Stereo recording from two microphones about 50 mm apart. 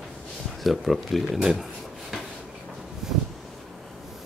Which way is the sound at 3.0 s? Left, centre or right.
Centre.